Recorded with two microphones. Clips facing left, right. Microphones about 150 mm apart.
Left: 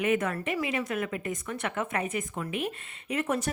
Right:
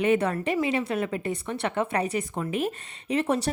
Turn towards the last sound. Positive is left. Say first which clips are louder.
# right 4 dB
turn(degrees=-30)  # may be behind; listen again after turning